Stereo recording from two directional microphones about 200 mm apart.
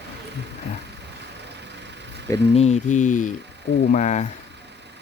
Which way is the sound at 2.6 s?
35° left (ahead or behind).